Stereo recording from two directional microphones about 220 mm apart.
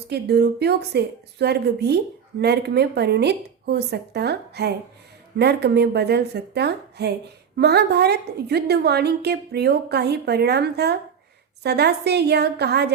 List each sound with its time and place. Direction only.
0.1 s a woman's voice: 50° right (ahead or behind)